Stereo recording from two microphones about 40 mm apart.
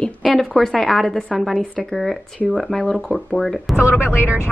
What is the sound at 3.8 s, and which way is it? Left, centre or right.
Speech, left.